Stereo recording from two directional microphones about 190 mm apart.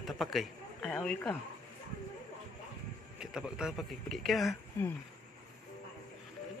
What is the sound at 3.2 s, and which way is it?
Speech, 5° right (ahead or behind).